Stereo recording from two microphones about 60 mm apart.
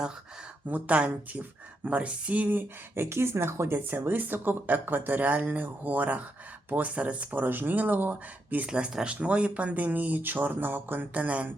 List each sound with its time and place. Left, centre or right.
0.7 s speech: right
2.9 s speech: right
8.6 s speech: centre